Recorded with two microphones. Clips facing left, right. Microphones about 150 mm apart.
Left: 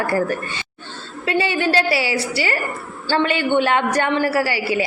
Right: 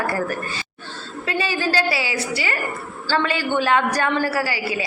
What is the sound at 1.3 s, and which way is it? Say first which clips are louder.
A woman's voice: left 4 dB; 25° left (ahead or behind).